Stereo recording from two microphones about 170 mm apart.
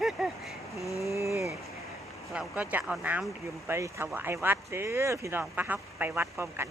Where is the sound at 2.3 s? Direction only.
5° right (ahead or behind).